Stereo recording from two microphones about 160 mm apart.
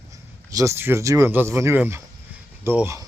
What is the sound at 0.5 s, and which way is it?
Speech, 20° right (ahead or behind).